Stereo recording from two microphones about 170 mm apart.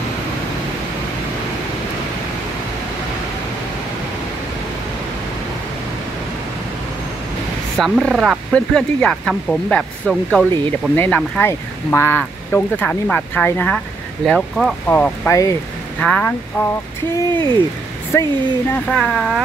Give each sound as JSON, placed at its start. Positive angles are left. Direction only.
{"t": 7.7, "sound": "speech", "side_deg": 0}
{"t": 15.2, "sound": "speech", "side_deg": 20}
{"t": 16.0, "sound": "speech", "side_deg": 5}
{"t": 18.7, "sound": "speech", "side_deg": 5}